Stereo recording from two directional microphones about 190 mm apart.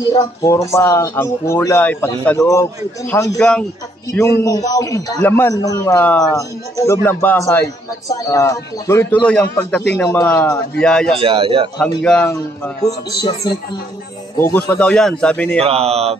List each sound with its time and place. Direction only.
0.1 s a man's voice: 15° left (ahead or behind)
3.3 s a man's voice: 5° left (ahead or behind)
4.1 s a man's voice: 15° left (ahead or behind)
11.1 s speech: 30° right (ahead or behind)
12.0 s a man's voice: 5° left (ahead or behind)
12.8 s a man's voice: 20° left (ahead or behind); by 15.6 s 5° left (ahead or behind)
15.6 s speech: 30° right (ahead or behind)